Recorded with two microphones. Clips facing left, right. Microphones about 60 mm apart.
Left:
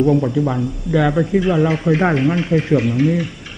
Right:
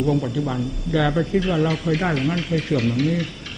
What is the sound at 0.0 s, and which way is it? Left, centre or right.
Speech, left.